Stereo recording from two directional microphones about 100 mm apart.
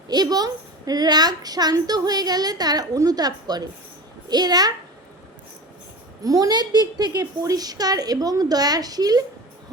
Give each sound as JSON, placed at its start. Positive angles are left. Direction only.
{"t": 0.1, "sound": "a woman's voice", "side_deg": -40}
{"t": 6.2, "sound": "a woman's voice", "side_deg": -40}